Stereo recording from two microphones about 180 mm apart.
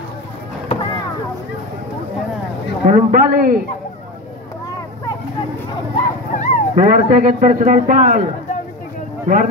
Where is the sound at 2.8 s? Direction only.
50° right (ahead or behind).